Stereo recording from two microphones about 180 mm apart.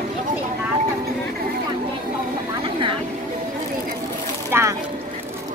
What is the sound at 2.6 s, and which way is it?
Vehicle, 30° right (ahead or behind).